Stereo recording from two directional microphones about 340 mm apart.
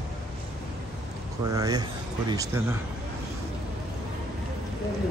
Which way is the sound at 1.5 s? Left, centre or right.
Centre.